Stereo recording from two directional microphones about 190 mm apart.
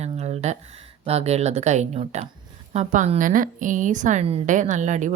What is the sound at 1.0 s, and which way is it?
A woman's voice, 35° right (ahead or behind).